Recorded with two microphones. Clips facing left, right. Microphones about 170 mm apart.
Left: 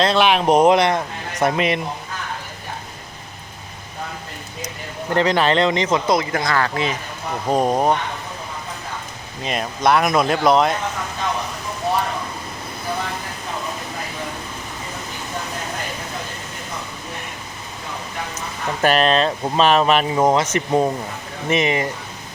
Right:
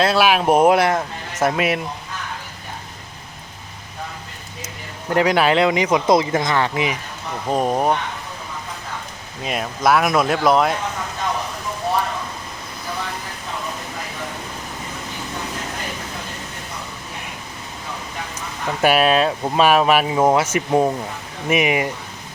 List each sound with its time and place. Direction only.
0.0 s speech: 5° right (ahead or behind)
5.1 s speech: 10° right (ahead or behind)
6.1 s speech: 25° right (ahead or behind)
7.5 s speech: centre (ahead or behind)
9.4 s speech: 5° right (ahead or behind)
18.8 s speech: 10° right (ahead or behind)